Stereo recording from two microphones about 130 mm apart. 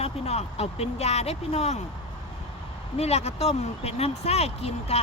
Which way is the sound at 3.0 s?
55° left (ahead or behind).